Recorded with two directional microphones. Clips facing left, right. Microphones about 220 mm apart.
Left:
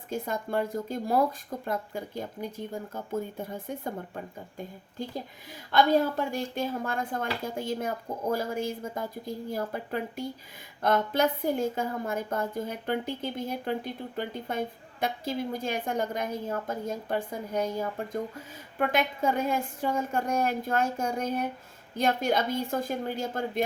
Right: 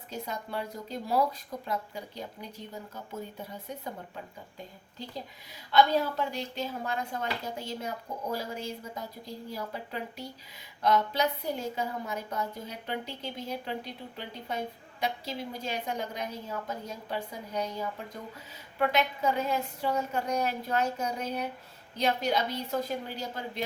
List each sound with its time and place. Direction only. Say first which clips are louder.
0.1 s a woman's voice: left 6 dB; 50° left (ahead or behind)